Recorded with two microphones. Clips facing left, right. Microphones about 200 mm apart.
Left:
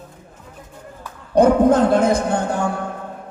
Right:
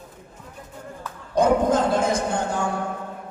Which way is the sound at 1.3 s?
60° left (ahead or behind).